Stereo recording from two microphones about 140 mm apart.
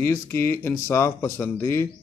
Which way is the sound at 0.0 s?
15° left (ahead or behind).